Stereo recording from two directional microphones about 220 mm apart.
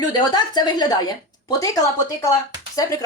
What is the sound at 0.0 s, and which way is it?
A woman's voice, 20° left (ahead or behind).